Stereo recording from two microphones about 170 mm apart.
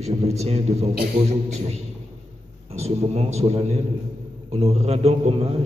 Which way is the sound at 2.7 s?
35° right (ahead or behind).